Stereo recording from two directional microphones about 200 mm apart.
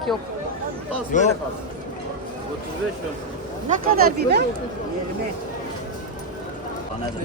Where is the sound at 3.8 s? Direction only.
50° right (ahead or behind).